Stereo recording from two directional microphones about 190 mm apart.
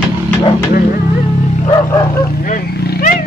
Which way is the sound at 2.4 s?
50° left (ahead or behind).